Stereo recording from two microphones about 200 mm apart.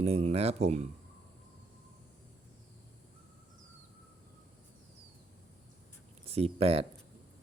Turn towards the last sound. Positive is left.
turn(degrees=-30)  # may be behind; listen again after turning